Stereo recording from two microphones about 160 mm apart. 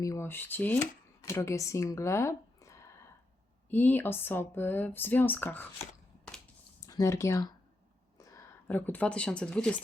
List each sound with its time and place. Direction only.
0.0 s speech: 20° left (ahead or behind)
6.7 s speech: 20° left (ahead or behind); by 9.8 s 5° left (ahead or behind)